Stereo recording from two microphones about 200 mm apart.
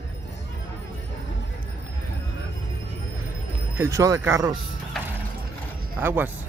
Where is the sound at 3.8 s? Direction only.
15° right (ahead or behind).